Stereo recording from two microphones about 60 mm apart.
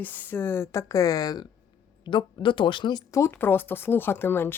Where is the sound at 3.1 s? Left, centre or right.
Left.